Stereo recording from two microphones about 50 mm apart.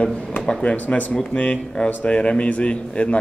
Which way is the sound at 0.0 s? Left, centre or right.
Left.